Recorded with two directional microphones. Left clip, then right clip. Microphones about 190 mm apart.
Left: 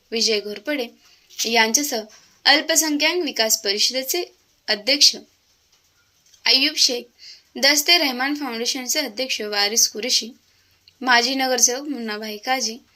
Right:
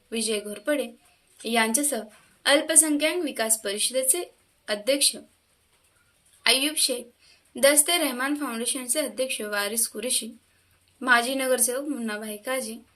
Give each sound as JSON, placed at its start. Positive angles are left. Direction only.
{"t": 0.1, "sound": "a woman's voice", "side_deg": 5}
{"t": 6.4, "sound": "a woman's voice", "side_deg": 5}